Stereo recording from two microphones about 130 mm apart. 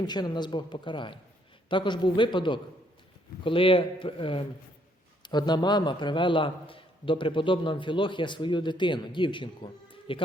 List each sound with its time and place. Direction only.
0.0 s a man's voice: 35° left (ahead or behind)